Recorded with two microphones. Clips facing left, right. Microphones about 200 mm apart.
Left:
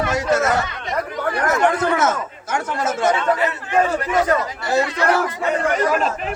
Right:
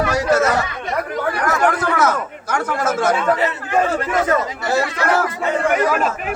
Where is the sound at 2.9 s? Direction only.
Centre (ahead or behind).